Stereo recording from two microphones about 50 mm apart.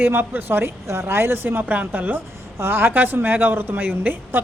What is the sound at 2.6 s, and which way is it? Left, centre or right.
A woman's voice, right.